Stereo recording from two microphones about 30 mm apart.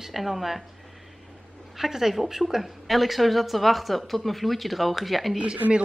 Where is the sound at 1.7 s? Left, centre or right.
Centre.